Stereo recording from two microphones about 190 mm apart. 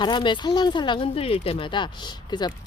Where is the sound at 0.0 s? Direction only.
25° left (ahead or behind).